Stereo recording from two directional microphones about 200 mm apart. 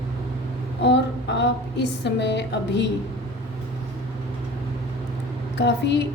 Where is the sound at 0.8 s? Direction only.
60° left (ahead or behind).